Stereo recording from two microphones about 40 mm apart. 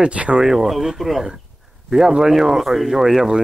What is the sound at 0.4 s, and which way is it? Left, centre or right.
Speech, centre.